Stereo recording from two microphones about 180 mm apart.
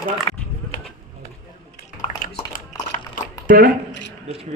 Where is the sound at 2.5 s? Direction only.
50° left (ahead or behind).